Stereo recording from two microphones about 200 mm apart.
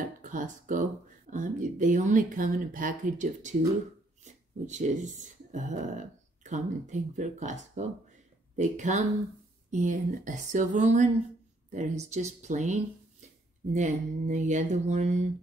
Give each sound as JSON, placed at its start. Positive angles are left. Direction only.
{"t": 0.0, "sound": "speech", "side_deg": -40}
{"t": 13.7, "sound": "speech", "side_deg": -35}